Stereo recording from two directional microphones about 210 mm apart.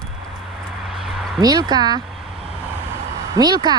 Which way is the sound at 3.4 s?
20° right (ahead or behind).